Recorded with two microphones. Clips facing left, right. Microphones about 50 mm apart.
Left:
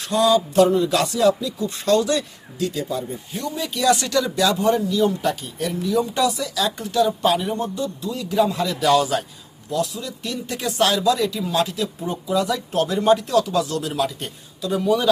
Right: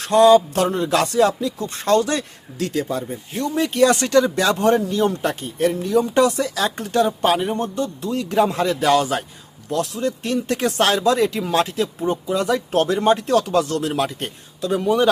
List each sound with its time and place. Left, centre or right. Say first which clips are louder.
0.0 s a sound: right 6 dB; right
1.4 s speech: right 1 dB; right
4.5 s speech: right 2 dB; right
9.6 s speech: right 3 dB; right